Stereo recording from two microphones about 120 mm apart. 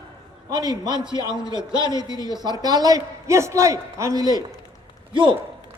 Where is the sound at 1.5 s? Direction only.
40° right (ahead or behind).